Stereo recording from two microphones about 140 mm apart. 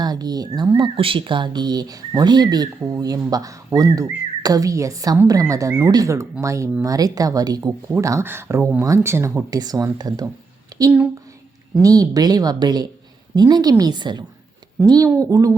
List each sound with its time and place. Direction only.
0.0 s speech: 30° right (ahead or behind)
10.7 s a sound: 25° right (ahead or behind)
11.8 s speech: 25° right (ahead or behind)